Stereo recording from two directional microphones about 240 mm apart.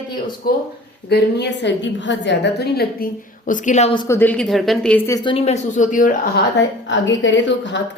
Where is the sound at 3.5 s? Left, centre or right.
Left.